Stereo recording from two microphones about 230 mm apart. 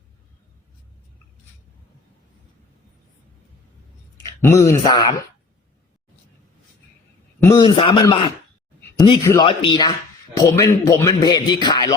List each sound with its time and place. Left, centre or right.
4.4 s a man's voice: centre
7.3 s a man's voice: centre
7.6 s a man's voice: left